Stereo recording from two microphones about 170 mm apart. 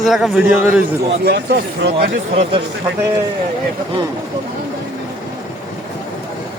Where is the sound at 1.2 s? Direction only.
75° right (ahead or behind).